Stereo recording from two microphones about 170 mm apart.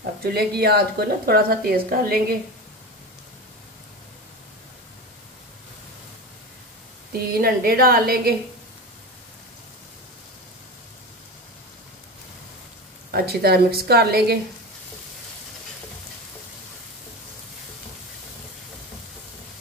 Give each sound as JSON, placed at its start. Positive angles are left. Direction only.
{"t": 0.2, "sound": "a woman's voice", "side_deg": -65}
{"t": 7.1, "sound": "a woman's voice", "side_deg": -65}
{"t": 13.1, "sound": "a woman's voice", "side_deg": -65}